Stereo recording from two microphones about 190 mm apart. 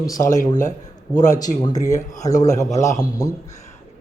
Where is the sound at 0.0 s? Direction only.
20° left (ahead or behind).